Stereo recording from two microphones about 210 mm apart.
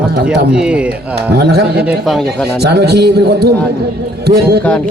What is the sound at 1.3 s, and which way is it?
Speech, 50° right (ahead or behind).